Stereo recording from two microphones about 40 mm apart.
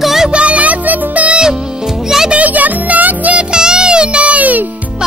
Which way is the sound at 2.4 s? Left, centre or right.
Right.